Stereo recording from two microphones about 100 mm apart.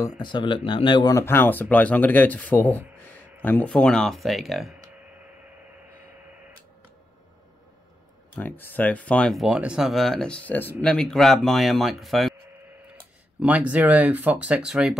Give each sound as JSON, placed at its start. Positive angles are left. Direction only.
{"t": 0.2, "sound": "speech", "side_deg": 50}
{"t": 1.1, "sound": "speech", "side_deg": 25}
{"t": 8.4, "sound": "speech", "side_deg": 20}
{"t": 9.3, "sound": "speech", "side_deg": -5}
{"t": 13.4, "sound": "speech", "side_deg": -15}